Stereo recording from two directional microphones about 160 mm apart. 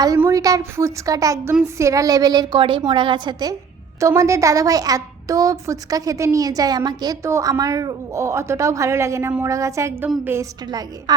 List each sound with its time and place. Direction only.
0.3 s a woman's voice: 20° right (ahead or behind)
10.7 s a woman's voice: 25° right (ahead or behind)